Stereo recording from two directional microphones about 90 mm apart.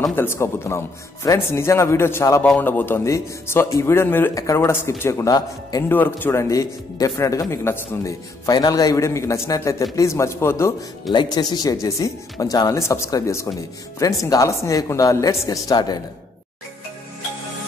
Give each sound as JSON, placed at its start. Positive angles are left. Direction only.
{"t": 0.1, "sound": "a man's voice", "side_deg": 25}
{"t": 2.4, "sound": "a man's voice", "side_deg": 15}
{"t": 5.3, "sound": "a man's voice", "side_deg": 45}
{"t": 5.9, "sound": "a man's voice", "side_deg": 20}
{"t": 6.5, "sound": "speech", "side_deg": 35}
{"t": 8.5, "sound": "speech", "side_deg": 45}
{"t": 11.1, "sound": "speech", "side_deg": 50}